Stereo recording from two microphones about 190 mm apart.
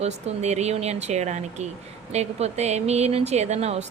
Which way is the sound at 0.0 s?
35° right (ahead or behind).